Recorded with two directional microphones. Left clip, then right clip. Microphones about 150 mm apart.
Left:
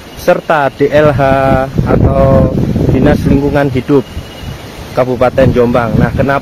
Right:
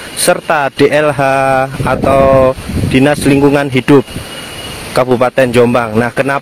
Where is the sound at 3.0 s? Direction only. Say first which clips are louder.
Right 3 dB; 45° right (ahead or behind).